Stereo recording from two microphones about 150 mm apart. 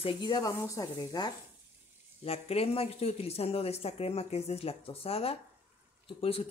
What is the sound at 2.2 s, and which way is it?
Speech, 40° left (ahead or behind).